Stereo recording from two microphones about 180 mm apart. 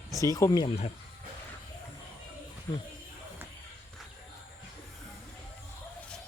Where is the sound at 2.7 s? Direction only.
15° left (ahead or behind).